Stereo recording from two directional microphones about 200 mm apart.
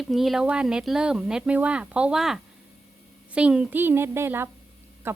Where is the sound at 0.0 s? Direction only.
Centre (ahead or behind).